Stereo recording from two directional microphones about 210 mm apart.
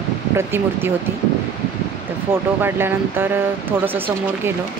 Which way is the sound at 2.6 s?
10° right (ahead or behind).